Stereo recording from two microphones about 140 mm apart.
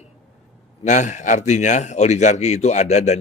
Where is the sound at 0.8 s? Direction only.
60° left (ahead or behind).